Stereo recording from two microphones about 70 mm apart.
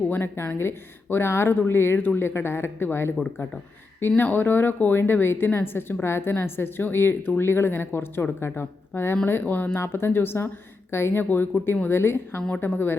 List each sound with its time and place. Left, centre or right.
0.1 s a woman's voice: left
4.2 s a woman's voice: left
9.7 s a woman's voice: left